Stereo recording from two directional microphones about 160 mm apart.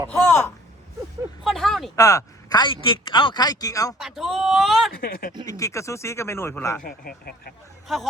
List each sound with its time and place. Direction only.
0.1 s speech: 10° left (ahead or behind)
1.5 s speech: centre (ahead or behind)
2.0 s speech: 20° left (ahead or behind)
3.9 s speech: centre (ahead or behind)
4.9 s speech: 70° left (ahead or behind)
5.5 s speech: 20° left (ahead or behind)
6.8 s speech: 65° left (ahead or behind)